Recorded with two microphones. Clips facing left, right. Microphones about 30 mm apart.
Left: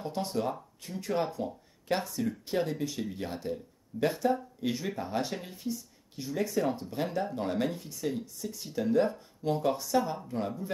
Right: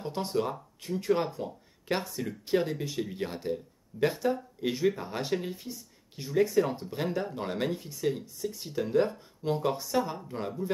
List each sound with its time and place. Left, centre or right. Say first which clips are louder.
0.0 s speech: right 1 dB; centre
4.1 s speech: left 1 dB; centre
4.6 s speech: right 5 dB; centre
7.3 s speech: left 1 dB; centre
9.9 s speech: left 2 dB; centre